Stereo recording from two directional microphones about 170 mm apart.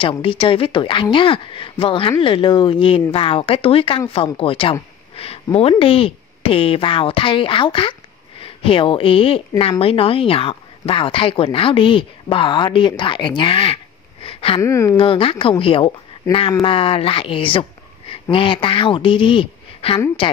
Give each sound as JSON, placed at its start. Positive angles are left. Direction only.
{"t": 0.0, "sound": "speech", "side_deg": 30}
{"t": 14.2, "sound": "a sound", "side_deg": 35}
{"t": 14.6, "sound": "speech", "side_deg": 15}
{"t": 15.0, "sound": "a woman's voice", "side_deg": 30}